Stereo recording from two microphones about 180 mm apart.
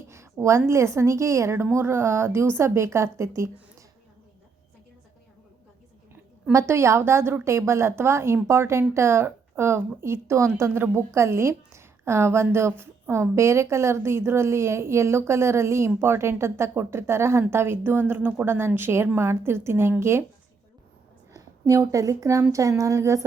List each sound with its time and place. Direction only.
0.1 s a sound: 15° right (ahead or behind)
0.7 s speech: 15° right (ahead or behind)
6.5 s speech: 15° right (ahead or behind)
21.7 s speech: 20° right (ahead or behind)